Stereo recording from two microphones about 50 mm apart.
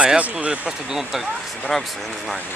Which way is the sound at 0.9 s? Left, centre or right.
Centre.